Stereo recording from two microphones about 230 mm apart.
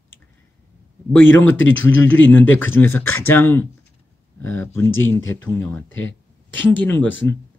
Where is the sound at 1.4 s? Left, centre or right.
Left.